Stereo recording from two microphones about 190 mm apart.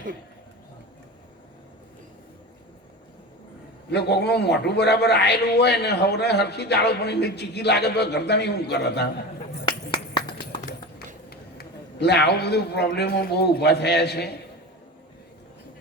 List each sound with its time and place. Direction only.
3.8 s a man's voice: 60° left (ahead or behind)
10.2 s a sound: 25° left (ahead or behind)
11.3 s a man's voice: 60° left (ahead or behind)